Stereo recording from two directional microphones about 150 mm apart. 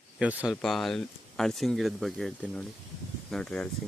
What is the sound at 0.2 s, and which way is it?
Speech, 10° right (ahead or behind).